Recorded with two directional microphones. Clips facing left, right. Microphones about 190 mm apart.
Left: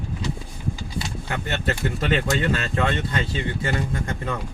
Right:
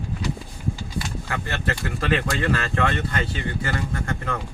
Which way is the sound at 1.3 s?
20° left (ahead or behind).